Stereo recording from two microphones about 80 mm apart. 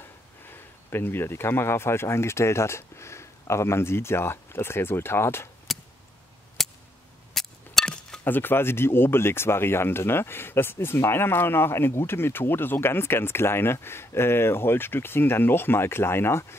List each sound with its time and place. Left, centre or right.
0.5 s speech: left
5.7 s a sound: centre
8.2 s speech: left